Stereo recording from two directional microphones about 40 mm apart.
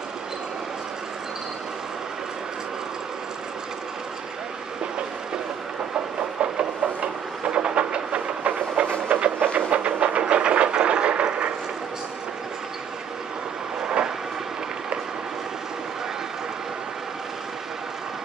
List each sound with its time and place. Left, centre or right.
6.4 s train: right
13.8 s train: right